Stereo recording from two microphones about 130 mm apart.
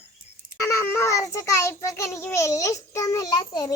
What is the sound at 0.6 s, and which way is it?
A child's voice, 25° left (ahead or behind).